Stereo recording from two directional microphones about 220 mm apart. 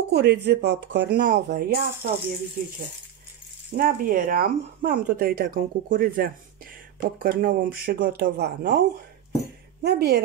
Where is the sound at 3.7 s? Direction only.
40° right (ahead or behind).